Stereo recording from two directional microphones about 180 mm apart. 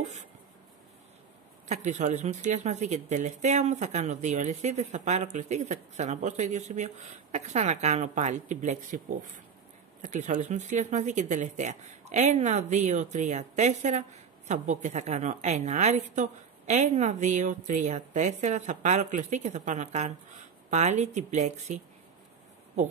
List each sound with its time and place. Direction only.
0.0 s writing: 40° right (ahead or behind)
1.7 s speech: 40° right (ahead or behind)